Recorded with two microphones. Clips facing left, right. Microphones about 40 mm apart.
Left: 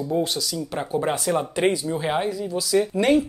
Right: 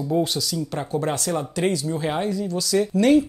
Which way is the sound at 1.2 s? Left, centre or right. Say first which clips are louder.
Left 2 dB; centre.